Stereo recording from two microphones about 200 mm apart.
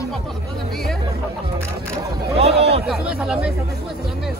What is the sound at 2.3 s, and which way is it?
Speech, 30° right (ahead or behind).